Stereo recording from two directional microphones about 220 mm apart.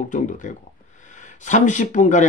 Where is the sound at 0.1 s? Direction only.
35° left (ahead or behind).